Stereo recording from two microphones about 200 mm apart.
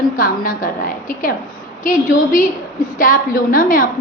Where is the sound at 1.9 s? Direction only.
40° left (ahead or behind).